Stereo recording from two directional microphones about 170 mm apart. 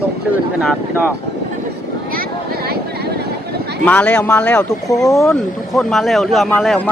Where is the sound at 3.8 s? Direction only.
10° left (ahead or behind).